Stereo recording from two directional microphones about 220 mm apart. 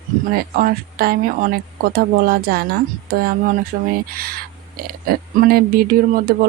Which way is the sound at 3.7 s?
45° right (ahead or behind).